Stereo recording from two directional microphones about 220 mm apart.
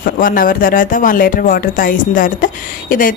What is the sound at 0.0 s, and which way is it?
A woman's voice, 40° left (ahead or behind).